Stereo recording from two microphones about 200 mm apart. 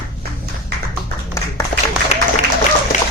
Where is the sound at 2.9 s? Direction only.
35° left (ahead or behind).